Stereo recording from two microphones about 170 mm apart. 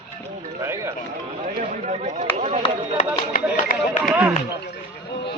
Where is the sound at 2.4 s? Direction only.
40° right (ahead or behind).